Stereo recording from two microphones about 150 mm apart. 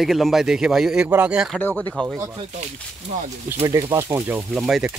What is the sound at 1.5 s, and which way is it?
Speech, 10° left (ahead or behind).